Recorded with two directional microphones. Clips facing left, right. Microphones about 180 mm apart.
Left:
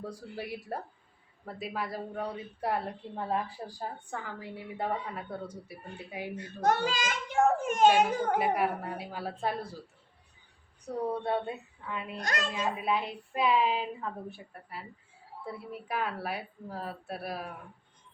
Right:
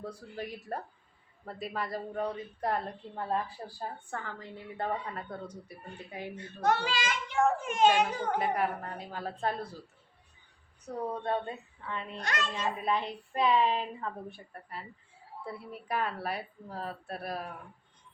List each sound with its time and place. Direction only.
0.0 s a woman's voice: 10° left (ahead or behind)
6.6 s a child's voice: 45° left (ahead or behind)
8.4 s a woman's voice: 10° left (ahead or behind)
10.8 s a woman's voice: 10° left (ahead or behind)
12.1 s a child's voice: 40° left (ahead or behind)
12.5 s a woman's voice: 5° left (ahead or behind)